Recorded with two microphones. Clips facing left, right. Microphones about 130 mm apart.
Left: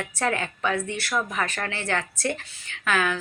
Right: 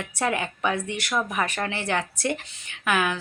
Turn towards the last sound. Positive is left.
turn(degrees=-15)  # may be behind; listen again after turning